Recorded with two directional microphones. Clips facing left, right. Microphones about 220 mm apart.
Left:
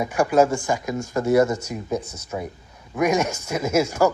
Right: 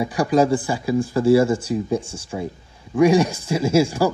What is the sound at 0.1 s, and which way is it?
Speech, 35° right (ahead or behind).